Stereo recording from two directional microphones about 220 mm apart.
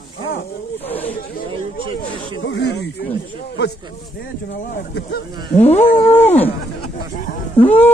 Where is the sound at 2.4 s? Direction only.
50° left (ahead or behind).